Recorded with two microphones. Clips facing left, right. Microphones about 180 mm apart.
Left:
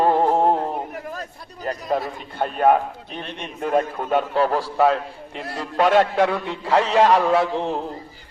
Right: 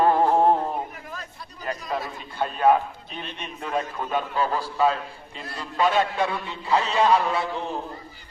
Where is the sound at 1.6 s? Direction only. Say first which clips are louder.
Left 5 dB; 40° left (ahead or behind); by 4.9 s 75° left (ahead or behind).